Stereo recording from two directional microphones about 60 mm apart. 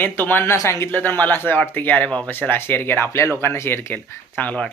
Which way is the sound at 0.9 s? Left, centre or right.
Left.